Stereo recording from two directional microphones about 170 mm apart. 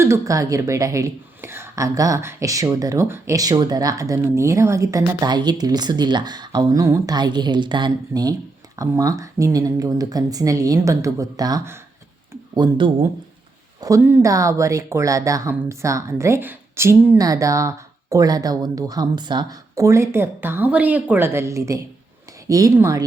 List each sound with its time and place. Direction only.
0.0 s speech: 20° right (ahead or behind)
12.5 s speech: 30° right (ahead or behind)
13.8 s speech: 15° right (ahead or behind)